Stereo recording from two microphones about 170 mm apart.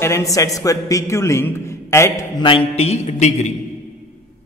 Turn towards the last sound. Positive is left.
turn(degrees=40)  # may be behind; listen again after turning